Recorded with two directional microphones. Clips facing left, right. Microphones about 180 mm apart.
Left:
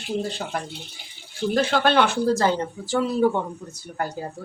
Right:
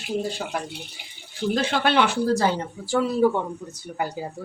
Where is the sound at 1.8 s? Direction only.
45° left (ahead or behind).